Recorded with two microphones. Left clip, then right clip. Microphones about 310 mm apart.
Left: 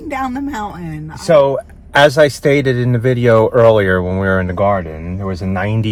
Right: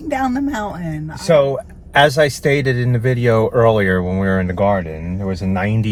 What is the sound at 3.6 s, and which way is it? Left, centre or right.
Speech, centre.